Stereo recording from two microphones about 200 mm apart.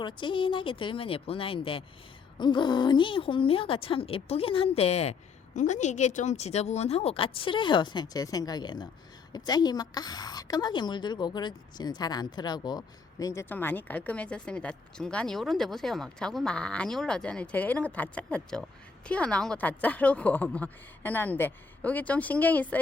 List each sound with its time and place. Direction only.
0.0 s a woman's voice: 25° left (ahead or behind); by 22.8 s 10° left (ahead or behind)